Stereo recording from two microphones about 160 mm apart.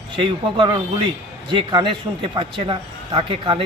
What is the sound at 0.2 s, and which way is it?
A man's voice, 30° right (ahead or behind).